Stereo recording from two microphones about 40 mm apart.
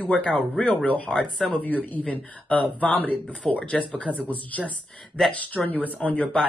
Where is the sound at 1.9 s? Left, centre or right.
Left.